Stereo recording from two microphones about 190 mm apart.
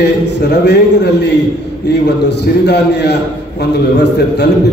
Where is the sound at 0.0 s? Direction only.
60° left (ahead or behind).